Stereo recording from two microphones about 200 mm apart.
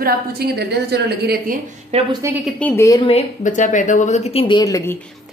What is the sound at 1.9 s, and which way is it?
Speech, 30° right (ahead or behind).